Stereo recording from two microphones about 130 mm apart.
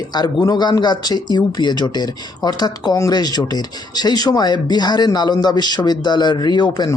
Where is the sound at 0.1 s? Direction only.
30° left (ahead or behind).